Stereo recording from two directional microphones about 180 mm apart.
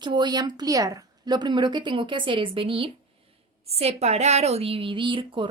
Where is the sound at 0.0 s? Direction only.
25° right (ahead or behind).